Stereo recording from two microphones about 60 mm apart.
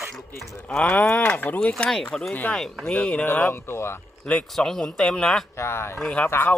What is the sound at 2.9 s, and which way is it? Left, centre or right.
Speech, left.